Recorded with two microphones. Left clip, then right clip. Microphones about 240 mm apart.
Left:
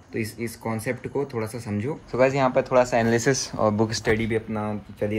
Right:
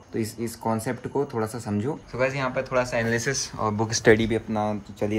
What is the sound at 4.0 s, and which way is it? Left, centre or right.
Speech, right.